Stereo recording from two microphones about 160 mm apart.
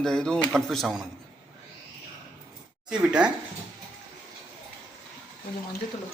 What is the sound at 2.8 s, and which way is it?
Speech, 5° right (ahead or behind).